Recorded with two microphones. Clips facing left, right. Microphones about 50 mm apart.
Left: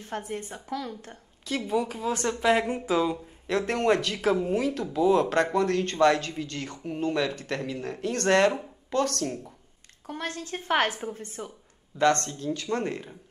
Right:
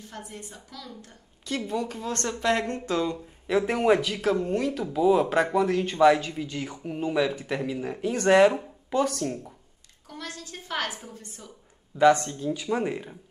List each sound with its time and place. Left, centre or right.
0.0 s a woman's voice: left
1.4 s speech: centre
3.4 s speech: centre
10.0 s a woman's voice: left
12.0 s speech: centre